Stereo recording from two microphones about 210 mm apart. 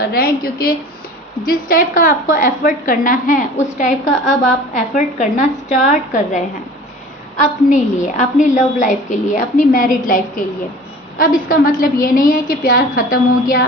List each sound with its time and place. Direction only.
0.1 s a woman's voice: 45° left (ahead or behind)
7.4 s a woman's voice: 35° left (ahead or behind)
11.2 s a woman's voice: 40° left (ahead or behind)